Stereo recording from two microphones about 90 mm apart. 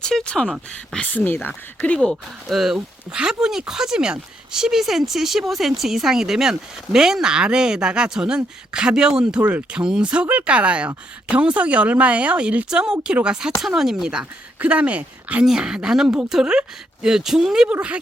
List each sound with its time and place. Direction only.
0.0 s speech: 5° left (ahead or behind)
2.5 s speech: 5° right (ahead or behind)